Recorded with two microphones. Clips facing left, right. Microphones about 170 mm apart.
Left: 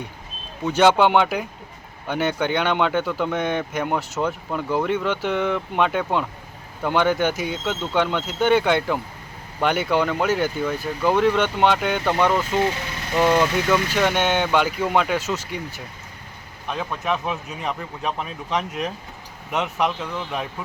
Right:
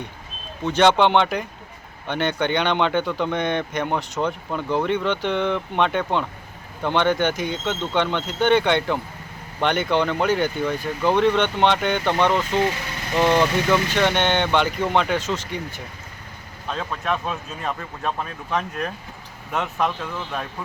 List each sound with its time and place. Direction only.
0.6 s speech: 5° left (ahead or behind)